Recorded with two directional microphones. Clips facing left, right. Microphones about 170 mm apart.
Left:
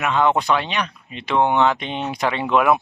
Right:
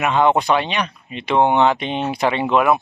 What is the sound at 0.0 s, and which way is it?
Speech, 15° right (ahead or behind).